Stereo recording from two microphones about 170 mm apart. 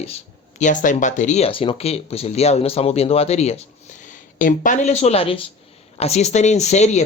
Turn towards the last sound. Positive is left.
turn(degrees=40)  # may be behind; listen again after turning